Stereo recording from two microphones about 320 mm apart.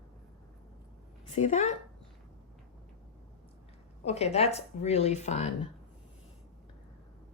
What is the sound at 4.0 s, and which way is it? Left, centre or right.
Speech, centre.